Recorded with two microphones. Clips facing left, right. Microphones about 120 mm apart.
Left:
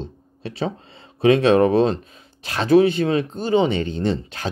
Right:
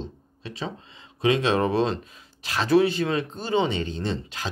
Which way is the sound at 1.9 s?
25° left (ahead or behind).